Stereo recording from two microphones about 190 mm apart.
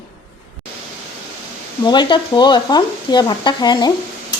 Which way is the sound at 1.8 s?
20° left (ahead or behind).